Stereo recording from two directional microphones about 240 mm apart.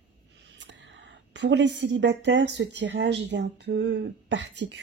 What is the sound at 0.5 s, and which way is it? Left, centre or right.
A woman's voice, right.